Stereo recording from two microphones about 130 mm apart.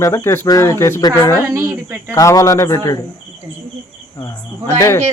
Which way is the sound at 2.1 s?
25° left (ahead or behind).